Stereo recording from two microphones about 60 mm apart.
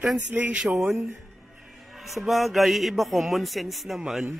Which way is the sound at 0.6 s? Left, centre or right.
Centre.